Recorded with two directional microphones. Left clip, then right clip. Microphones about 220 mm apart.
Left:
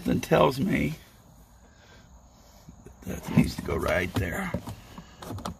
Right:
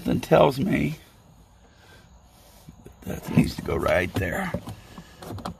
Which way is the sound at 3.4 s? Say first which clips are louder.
Right 4 dB; 40° right (ahead or behind).